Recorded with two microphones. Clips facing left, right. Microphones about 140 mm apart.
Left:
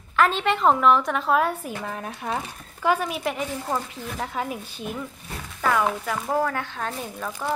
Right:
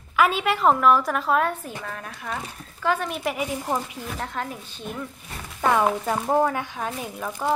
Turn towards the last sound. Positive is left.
turn(degrees=-10)  # may be behind; listen again after turning